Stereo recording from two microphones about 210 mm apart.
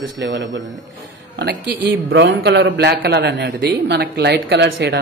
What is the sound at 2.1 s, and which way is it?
A man's voice, 55° right (ahead or behind).